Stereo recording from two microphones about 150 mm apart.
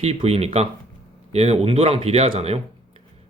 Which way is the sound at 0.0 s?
45° right (ahead or behind).